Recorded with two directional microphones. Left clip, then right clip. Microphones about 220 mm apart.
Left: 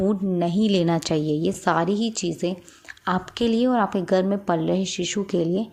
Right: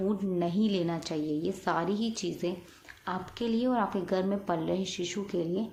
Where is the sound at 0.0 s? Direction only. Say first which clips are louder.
Left 7 dB; 30° left (ahead or behind).